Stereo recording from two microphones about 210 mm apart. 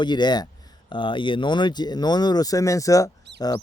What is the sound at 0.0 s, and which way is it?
Speech, 20° left (ahead or behind).